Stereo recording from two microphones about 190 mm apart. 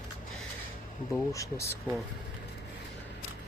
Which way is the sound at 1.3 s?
15° left (ahead or behind).